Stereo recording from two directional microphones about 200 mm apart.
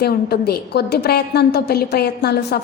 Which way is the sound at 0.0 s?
50° left (ahead or behind).